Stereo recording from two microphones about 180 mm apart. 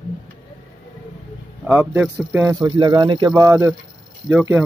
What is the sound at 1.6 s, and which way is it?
Speech, 10° right (ahead or behind).